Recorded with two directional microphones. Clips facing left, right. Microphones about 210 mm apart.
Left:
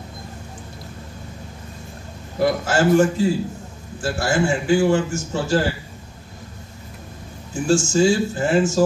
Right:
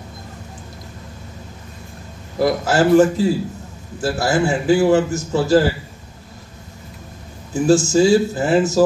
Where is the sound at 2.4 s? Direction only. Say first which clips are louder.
Right 2 dB; 40° right (ahead or behind).